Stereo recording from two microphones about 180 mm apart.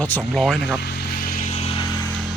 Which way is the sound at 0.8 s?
60° left (ahead or behind).